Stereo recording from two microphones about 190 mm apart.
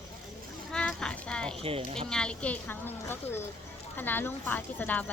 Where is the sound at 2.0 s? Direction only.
5° left (ahead or behind).